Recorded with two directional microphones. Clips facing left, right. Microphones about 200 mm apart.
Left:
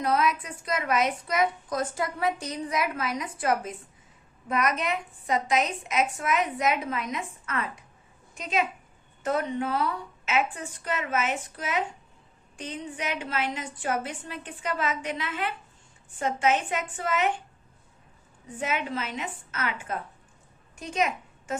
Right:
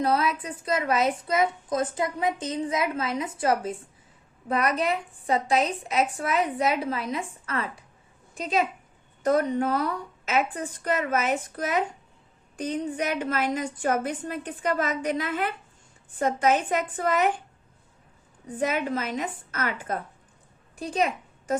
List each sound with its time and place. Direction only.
0.0 s a woman's voice: 30° right (ahead or behind)
18.4 s a woman's voice: 40° right (ahead or behind)
20.7 s a sound: 35° right (ahead or behind)